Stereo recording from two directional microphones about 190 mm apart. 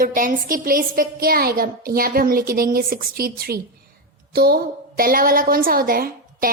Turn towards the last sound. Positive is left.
turn(degrees=-50)  # may be behind; listen again after turning